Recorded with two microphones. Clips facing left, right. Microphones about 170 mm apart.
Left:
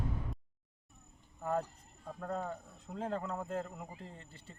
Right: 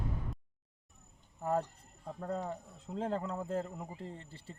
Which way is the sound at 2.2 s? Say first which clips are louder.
Right 1 dB; 30° right (ahead or behind).